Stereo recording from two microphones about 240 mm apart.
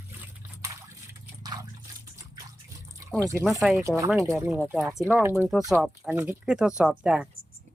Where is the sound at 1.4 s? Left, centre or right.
Centre.